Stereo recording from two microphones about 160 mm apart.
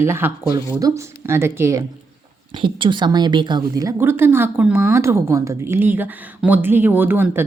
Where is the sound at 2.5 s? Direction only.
30° right (ahead or behind); by 7.4 s 15° right (ahead or behind).